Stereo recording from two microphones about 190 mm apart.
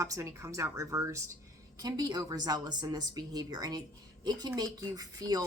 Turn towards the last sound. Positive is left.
turn(degrees=-20)  # may be behind; listen again after turning